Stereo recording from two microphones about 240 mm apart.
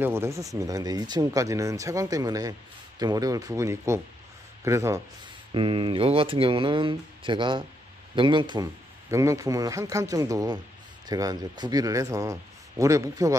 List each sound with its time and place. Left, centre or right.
0.0 s speech: centre